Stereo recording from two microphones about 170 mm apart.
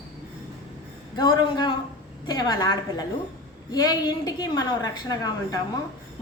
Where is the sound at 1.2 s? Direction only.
25° left (ahead or behind).